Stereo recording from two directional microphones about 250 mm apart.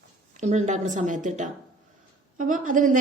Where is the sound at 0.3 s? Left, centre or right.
Right.